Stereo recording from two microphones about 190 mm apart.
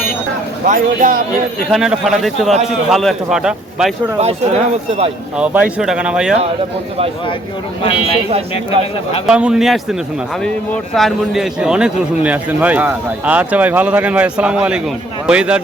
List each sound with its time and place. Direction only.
0.7 s speech: 45° right (ahead or behind)
1.7 s a man's voice: centre (ahead or behind)
4.2 s speech: 35° right (ahead or behind)
5.4 s a man's voice: 5° right (ahead or behind)
7.9 s speech: 30° left (ahead or behind)
9.2 s a man's voice: 5° right (ahead or behind)
10.9 s a man's voice: centre (ahead or behind)